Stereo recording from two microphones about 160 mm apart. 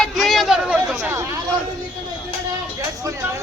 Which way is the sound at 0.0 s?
Centre (ahead or behind).